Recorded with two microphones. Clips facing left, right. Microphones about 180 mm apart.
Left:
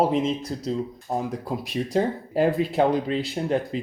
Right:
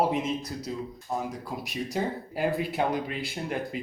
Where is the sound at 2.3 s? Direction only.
30° left (ahead or behind).